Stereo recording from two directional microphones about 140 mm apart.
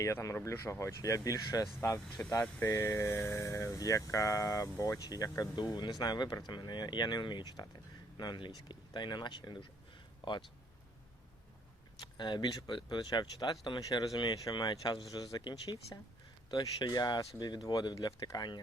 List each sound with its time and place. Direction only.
0.0 s speech: 25° left (ahead or behind)
11.9 s speech: 35° left (ahead or behind)